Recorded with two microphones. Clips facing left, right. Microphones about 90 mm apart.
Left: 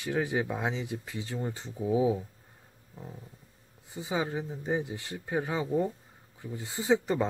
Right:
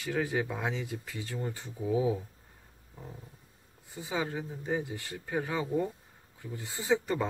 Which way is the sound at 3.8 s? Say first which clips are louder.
Left 2 dB; 20° left (ahead or behind).